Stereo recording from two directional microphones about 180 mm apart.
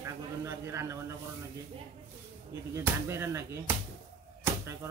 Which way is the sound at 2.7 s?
15° right (ahead or behind).